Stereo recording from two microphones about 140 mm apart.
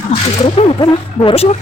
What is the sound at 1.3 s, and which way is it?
Speech, 50° left (ahead or behind).